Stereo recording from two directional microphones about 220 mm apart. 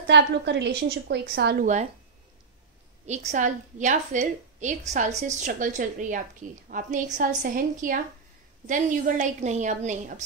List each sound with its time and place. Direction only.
0.0 s a woman's voice: 50° right (ahead or behind); by 1.9 s 35° right (ahead or behind)
3.1 s a woman's voice: 30° right (ahead or behind)